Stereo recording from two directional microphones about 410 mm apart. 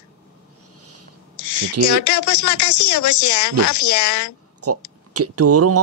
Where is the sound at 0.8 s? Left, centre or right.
Right.